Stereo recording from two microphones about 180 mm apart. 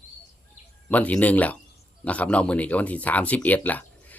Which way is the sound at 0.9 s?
10° left (ahead or behind).